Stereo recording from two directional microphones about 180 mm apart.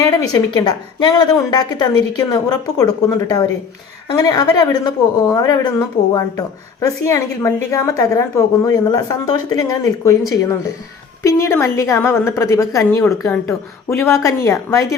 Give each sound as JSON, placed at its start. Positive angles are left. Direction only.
{"t": 0.0, "sound": "a woman's voice", "side_deg": 20}